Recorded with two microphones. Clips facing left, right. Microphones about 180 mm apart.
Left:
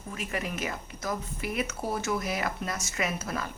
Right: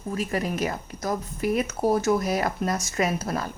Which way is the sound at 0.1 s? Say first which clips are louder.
Right 7 dB; 40° right (ahead or behind).